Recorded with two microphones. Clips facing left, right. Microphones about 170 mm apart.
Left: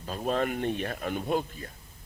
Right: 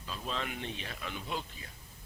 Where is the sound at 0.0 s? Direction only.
50° left (ahead or behind).